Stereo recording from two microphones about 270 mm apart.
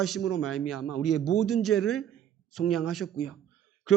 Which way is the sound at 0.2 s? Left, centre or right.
Left.